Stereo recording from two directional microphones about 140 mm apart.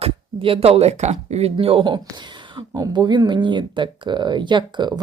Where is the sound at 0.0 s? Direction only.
40° right (ahead or behind).